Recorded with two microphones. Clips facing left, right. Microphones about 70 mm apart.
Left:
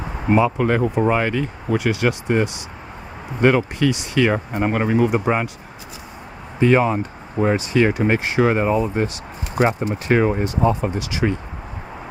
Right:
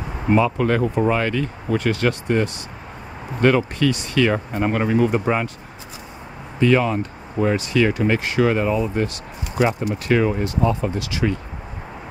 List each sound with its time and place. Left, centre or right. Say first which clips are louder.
0.3 s speech: left 1 dB; centre
6.6 s speech: left 1 dB; left